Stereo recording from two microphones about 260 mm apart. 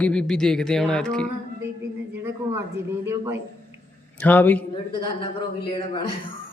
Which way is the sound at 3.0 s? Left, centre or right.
Centre.